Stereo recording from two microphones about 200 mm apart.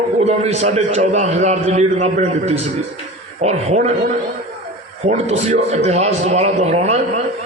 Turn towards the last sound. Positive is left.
turn(degrees=-30)  # may be behind; listen again after turning